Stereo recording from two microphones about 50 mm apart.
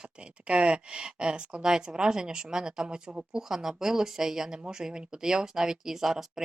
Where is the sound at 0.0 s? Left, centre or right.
Right.